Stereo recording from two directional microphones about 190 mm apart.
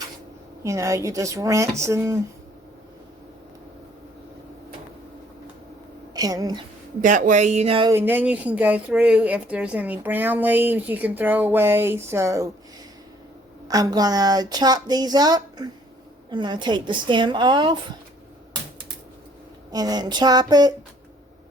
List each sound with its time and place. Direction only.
0.6 s speech: 15° right (ahead or behind)
6.1 s speech: 20° right (ahead or behind)
7.0 s speech: 45° right (ahead or behind)
7.9 s speech: 10° right (ahead or behind)
13.7 s speech: 20° right (ahead or behind)
19.7 s speech: 20° right (ahead or behind)